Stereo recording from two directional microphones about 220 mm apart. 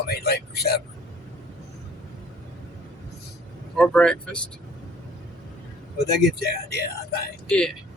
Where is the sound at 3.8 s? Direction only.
5° left (ahead or behind).